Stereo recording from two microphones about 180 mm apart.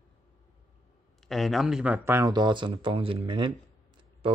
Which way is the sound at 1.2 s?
Centre (ahead or behind).